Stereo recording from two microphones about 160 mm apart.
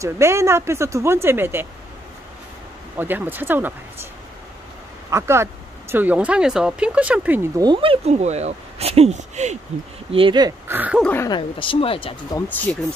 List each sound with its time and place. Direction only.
0.0 s speech: 15° right (ahead or behind)
3.0 s speech: 10° right (ahead or behind)
5.1 s speech: 15° right (ahead or behind)
7.5 s speech: 30° right (ahead or behind); by 9.6 s 45° right (ahead or behind)
10.1 s speech: 30° right (ahead or behind)
10.7 s speech: 10° right (ahead or behind)
11.0 s speech: 10° left (ahead or behind)
11.2 s speech: 30° left (ahead or behind)
12.4 s speech: 10° left (ahead or behind)